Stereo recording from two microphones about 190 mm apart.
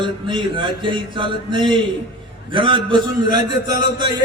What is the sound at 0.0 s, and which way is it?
A man's voice, 25° right (ahead or behind).